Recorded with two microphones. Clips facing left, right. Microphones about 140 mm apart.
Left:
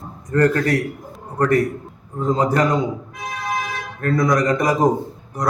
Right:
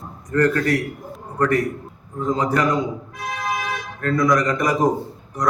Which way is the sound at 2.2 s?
35° left (ahead or behind).